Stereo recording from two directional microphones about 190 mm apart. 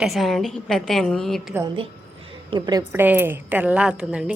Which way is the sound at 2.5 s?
20° right (ahead or behind).